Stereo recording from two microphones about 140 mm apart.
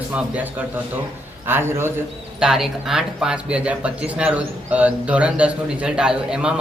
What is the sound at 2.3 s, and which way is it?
Speech, 5° right (ahead or behind).